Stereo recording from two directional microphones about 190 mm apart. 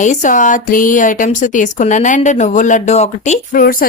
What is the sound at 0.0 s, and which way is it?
Speech, 40° left (ahead or behind).